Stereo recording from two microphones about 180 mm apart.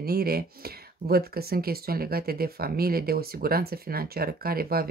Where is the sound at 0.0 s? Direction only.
60° right (ahead or behind).